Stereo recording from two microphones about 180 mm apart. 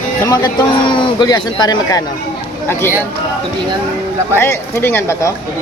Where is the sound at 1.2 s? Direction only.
20° left (ahead or behind).